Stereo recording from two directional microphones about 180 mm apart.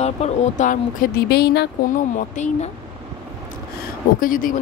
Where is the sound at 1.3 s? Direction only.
65° left (ahead or behind).